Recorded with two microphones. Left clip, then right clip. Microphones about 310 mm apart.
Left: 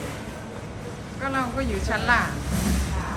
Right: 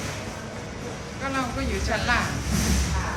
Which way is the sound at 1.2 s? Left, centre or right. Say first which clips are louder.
Left 2 dB; centre.